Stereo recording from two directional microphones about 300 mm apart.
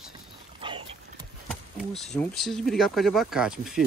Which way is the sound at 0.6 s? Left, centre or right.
Centre.